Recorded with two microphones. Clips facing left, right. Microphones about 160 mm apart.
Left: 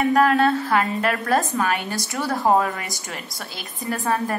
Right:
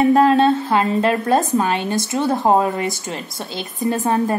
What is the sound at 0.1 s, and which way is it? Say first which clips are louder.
A woman's voice: right 4 dB; 25° right (ahead or behind).